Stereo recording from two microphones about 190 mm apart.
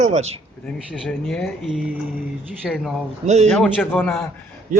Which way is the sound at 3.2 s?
35° right (ahead or behind).